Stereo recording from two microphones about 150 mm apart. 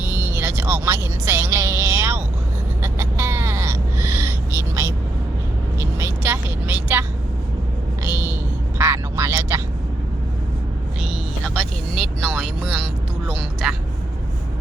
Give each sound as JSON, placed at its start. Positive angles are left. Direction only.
{"t": 0.1, "sound": "music", "side_deg": -15}
{"t": 2.8, "sound": "a sound", "side_deg": -15}
{"t": 5.8, "sound": "vehicle", "side_deg": -15}
{"t": 8.8, "sound": "quack", "side_deg": -15}
{"t": 11.9, "sound": "music", "side_deg": 0}
{"t": 13.2, "sound": "vehicle", "side_deg": 0}